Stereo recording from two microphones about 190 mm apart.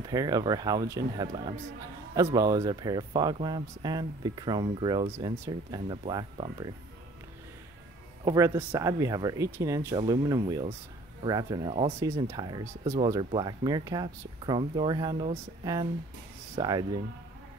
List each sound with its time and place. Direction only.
0.1 s speech: 20° right (ahead or behind)
8.3 s speech: 15° right (ahead or behind)
12.0 s speech: 15° right (ahead or behind)